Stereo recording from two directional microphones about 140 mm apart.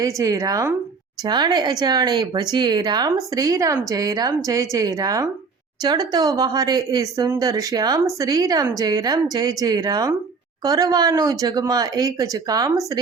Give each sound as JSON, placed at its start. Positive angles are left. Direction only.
{"t": 0.0, "sound": "speech", "side_deg": -25}